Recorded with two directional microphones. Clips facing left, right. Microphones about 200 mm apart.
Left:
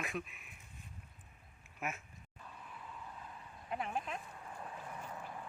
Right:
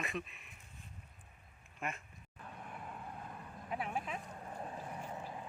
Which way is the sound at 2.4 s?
60° right (ahead or behind).